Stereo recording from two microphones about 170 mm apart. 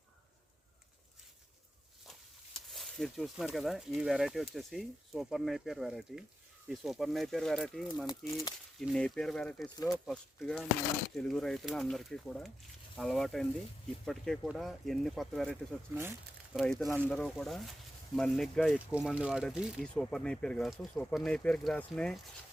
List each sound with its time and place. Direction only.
2.6 s speech: centre (ahead or behind)
9.6 s speech: 25° left (ahead or behind)
9.9 s speech: centre (ahead or behind)